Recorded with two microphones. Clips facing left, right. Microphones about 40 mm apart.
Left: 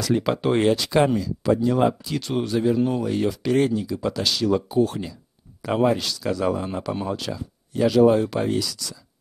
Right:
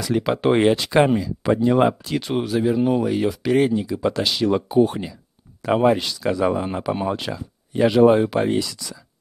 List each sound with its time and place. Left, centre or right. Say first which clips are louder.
0.0 s speech: right 2 dB; centre